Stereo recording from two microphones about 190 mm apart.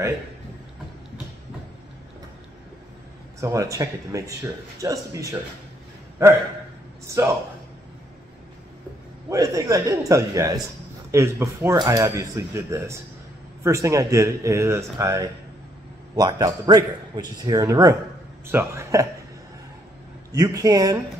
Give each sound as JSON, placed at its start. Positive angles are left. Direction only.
{"t": 3.3, "sound": "speech", "side_deg": -15}
{"t": 7.1, "sound": "speech", "side_deg": -15}
{"t": 9.3, "sound": "a man's voice", "side_deg": -20}
{"t": 20.3, "sound": "a man's voice", "side_deg": -20}